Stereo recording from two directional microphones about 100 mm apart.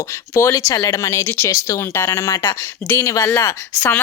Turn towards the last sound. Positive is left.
turn(degrees=25)  # may be behind; listen again after turning